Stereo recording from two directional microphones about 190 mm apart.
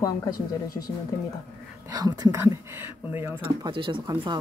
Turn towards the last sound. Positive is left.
turn(degrees=-25)  # may be behind; listen again after turning